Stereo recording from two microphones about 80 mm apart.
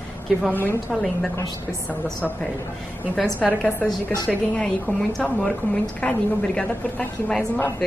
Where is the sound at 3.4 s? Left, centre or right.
Centre.